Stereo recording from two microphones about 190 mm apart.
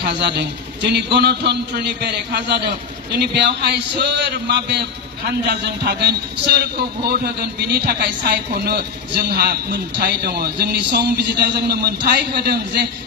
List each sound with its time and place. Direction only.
0.2 s speech: 60° right (ahead or behind)
9.4 s speech: 55° right (ahead or behind)